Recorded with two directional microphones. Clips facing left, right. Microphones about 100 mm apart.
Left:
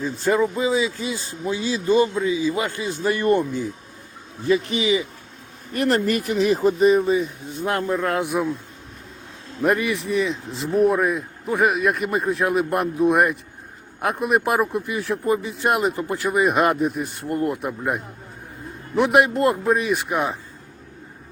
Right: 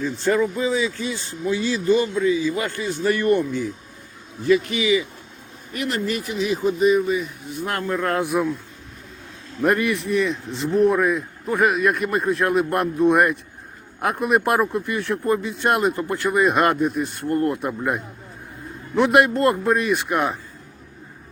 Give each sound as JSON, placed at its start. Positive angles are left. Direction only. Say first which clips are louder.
{"t": 0.0, "sound": "a man's voice", "louder": "even", "side_deg": 20}
{"t": 5.7, "sound": "speech", "louder": "left 5 dB", "side_deg": 40}
{"t": 7.6, "sound": "a man's voice", "louder": "left 3 dB", "side_deg": 20}
{"t": 7.9, "sound": "speech", "louder": "right 1 dB", "side_deg": 0}
{"t": 9.6, "sound": "speech", "louder": "right 1 dB", "side_deg": 0}